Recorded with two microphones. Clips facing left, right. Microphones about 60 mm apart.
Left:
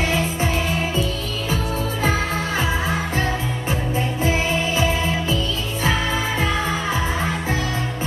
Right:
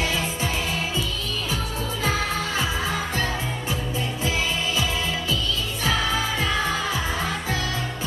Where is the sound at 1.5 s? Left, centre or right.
Left.